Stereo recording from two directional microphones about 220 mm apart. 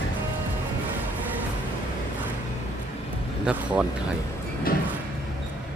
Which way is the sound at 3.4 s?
5° right (ahead or behind).